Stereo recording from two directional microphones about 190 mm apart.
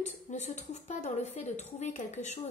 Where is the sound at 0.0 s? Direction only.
40° left (ahead or behind).